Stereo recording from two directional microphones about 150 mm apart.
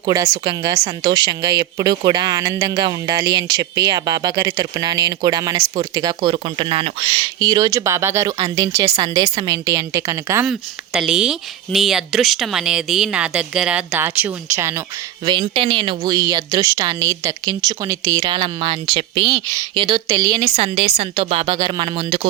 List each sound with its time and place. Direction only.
0.0 s speech: 25° right (ahead or behind)
10.4 s speech: centre (ahead or behind); by 14.8 s 20° right (ahead or behind)
15.2 s speech: 30° right (ahead or behind)